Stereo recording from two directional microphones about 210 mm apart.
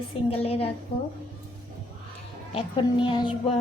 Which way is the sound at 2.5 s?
25° left (ahead or behind).